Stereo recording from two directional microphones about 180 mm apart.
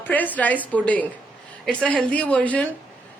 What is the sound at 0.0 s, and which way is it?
A woman's voice, 10° left (ahead or behind).